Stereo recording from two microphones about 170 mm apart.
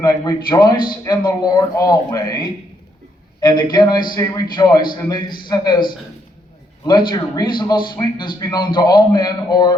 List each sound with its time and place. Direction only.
0.0 s speech: 25° left (ahead or behind)
6.8 s speech: 25° left (ahead or behind)